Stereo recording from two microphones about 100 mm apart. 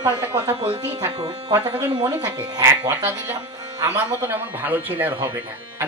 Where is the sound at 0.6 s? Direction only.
70° right (ahead or behind).